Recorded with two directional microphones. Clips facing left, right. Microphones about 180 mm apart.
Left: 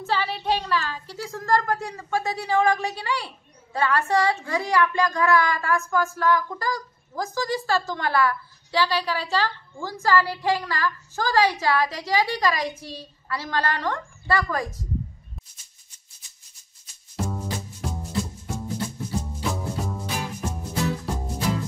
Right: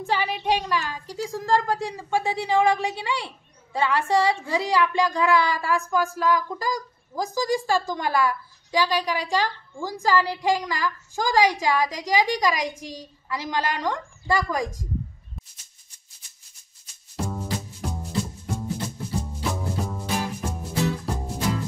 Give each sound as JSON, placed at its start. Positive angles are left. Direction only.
{"t": 0.0, "sound": "a woman's voice", "side_deg": -15}
{"t": 17.2, "sound": "music", "side_deg": 0}
{"t": 19.1, "sound": "music", "side_deg": 0}